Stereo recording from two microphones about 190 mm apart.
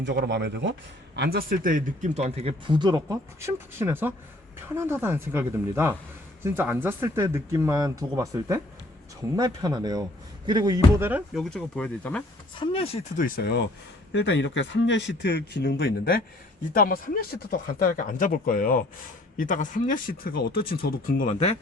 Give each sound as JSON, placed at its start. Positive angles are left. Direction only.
{"t": 0.0, "sound": "speech", "side_deg": -65}
{"t": 11.3, "sound": "speech", "side_deg": 5}
{"t": 12.5, "sound": "speech", "side_deg": 30}
{"t": 13.2, "sound": "speech", "side_deg": 55}
{"t": 14.1, "sound": "speech", "side_deg": 70}